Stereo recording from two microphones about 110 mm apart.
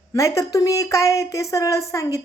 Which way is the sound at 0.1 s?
30° left (ahead or behind).